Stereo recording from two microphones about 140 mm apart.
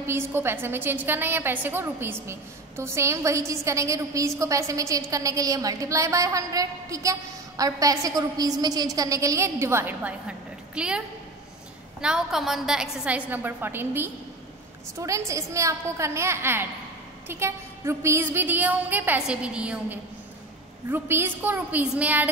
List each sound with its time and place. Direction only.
0.0 s a woman's voice: 15° right (ahead or behind)